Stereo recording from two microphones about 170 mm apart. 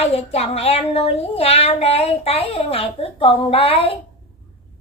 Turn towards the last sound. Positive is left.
turn(degrees=30)  # may be behind; listen again after turning